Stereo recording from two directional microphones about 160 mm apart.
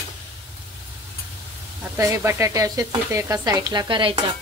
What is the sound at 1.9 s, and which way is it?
Speech, 20° right (ahead or behind).